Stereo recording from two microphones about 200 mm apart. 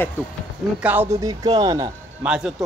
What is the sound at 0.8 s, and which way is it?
Speech, 10° right (ahead or behind).